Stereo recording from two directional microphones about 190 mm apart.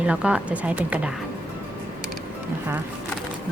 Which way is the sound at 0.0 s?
5° right (ahead or behind).